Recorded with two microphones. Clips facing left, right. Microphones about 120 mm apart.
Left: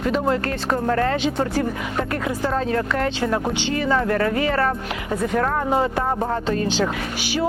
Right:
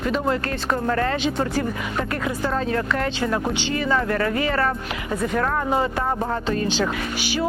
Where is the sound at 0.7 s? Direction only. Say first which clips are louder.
Left 2 dB; 35° left (ahead or behind).